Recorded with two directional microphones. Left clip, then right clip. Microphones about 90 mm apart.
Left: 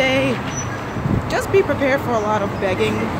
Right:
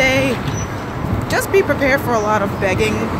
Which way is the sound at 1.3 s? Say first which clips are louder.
Right 2 dB; 20° left (ahead or behind).